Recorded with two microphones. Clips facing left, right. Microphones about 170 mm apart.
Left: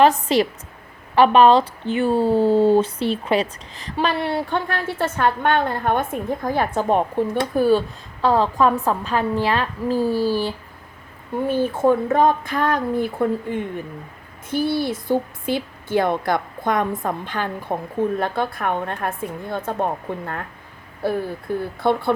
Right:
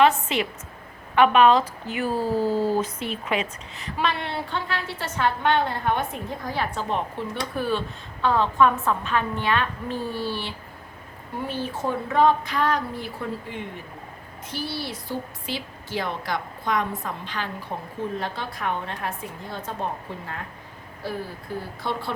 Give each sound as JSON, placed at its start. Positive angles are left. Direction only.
{"t": 0.0, "sound": "a woman's voice", "side_deg": 35}